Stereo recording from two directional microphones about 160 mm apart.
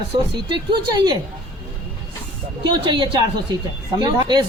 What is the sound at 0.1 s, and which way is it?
A woman's voice, 30° right (ahead or behind).